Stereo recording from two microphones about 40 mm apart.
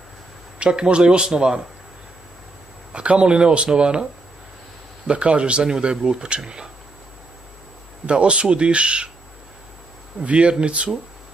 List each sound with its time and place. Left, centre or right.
0.6 s speech: right
2.9 s speech: right
8.1 s speech: right
10.2 s speech: right